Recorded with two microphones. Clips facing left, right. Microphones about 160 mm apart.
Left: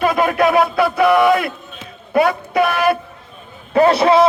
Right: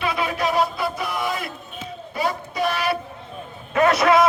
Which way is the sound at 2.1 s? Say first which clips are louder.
Left 10 dB; 65° left (ahead or behind).